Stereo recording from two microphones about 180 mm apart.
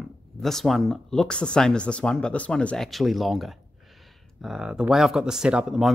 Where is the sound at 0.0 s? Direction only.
Centre (ahead or behind).